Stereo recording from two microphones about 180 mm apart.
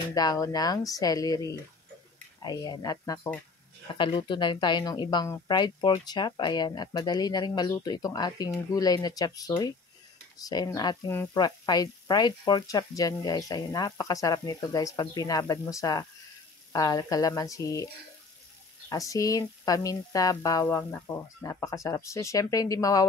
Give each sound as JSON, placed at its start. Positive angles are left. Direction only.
{"t": 0.1, "sound": "speech", "side_deg": 20}
{"t": 18.9, "sound": "speech", "side_deg": 20}